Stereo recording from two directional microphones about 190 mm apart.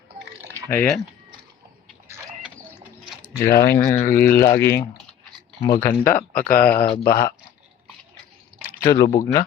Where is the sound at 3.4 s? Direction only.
50° left (ahead or behind).